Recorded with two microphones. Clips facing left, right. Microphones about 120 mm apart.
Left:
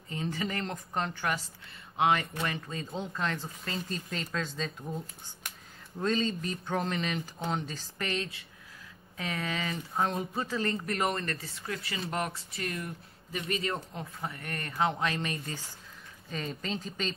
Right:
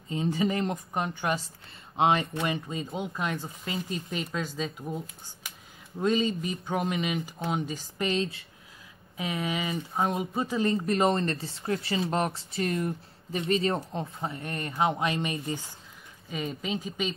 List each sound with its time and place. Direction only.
0.1 s speech: 20° right (ahead or behind)